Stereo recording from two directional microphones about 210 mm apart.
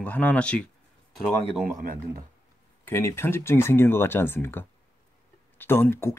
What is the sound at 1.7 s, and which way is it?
Speech, 40° right (ahead or behind).